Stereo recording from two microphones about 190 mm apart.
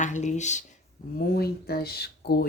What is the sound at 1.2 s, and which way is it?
Speech, 55° left (ahead or behind).